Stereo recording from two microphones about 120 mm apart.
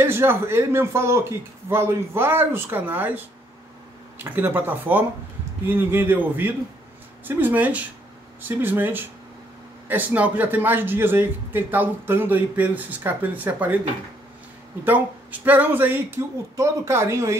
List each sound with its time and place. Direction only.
0.0 s speech: 20° right (ahead or behind)
4.2 s a man's voice: 15° right (ahead or behind)
14.9 s a man's voice: 15° right (ahead or behind)